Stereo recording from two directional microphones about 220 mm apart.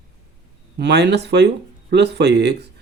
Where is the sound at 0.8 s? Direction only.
50° right (ahead or behind).